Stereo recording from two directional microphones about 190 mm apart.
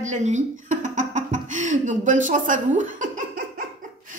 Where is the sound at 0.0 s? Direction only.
40° right (ahead or behind).